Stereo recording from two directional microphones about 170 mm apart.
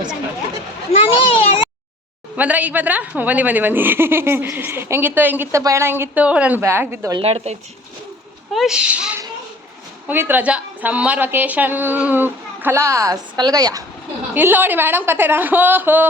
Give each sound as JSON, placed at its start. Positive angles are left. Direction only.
{"t": 0.9, "sound": "children playing", "side_deg": 35}
{"t": 2.3, "sound": "a woman's voice", "side_deg": -10}
{"t": 7.2, "sound": "speech", "side_deg": -35}
{"t": 8.5, "sound": "a woman's voice", "side_deg": -5}
{"t": 14.3, "sound": "a woman's voice", "side_deg": -10}